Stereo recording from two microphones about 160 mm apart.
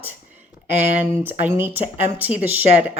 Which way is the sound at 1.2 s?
10° right (ahead or behind).